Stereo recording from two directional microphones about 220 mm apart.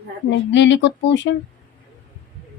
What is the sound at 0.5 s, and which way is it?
Speech, 55° left (ahead or behind).